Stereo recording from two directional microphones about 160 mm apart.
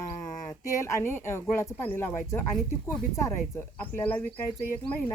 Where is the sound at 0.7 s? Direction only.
20° left (ahead or behind).